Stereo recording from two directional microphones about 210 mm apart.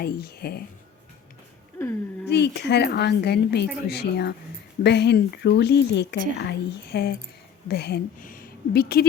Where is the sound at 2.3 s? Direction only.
55° left (ahead or behind).